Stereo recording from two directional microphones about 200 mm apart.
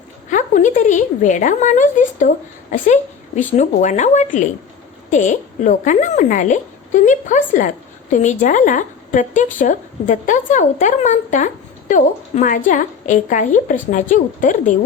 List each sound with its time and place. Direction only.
0.3 s a woman's voice: 40° left (ahead or behind)